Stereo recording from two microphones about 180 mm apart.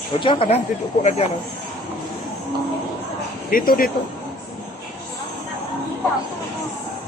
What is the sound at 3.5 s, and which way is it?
Speech, 50° left (ahead or behind).